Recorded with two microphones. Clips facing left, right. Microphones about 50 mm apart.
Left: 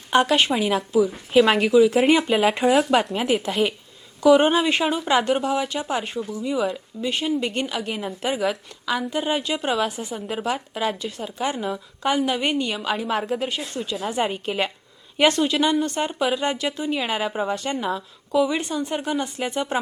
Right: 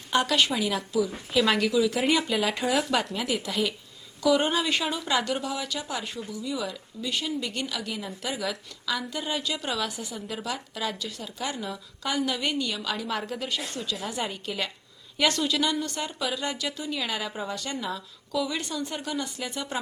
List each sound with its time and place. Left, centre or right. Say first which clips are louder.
0.1 s speech: left 5 dB; left